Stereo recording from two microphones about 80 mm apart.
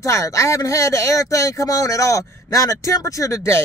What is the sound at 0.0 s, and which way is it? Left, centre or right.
Speech, left.